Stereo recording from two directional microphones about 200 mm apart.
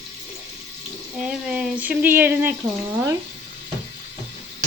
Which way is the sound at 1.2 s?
5° right (ahead or behind).